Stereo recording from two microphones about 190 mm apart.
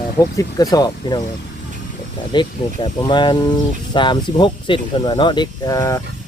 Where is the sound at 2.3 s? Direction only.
25° left (ahead or behind).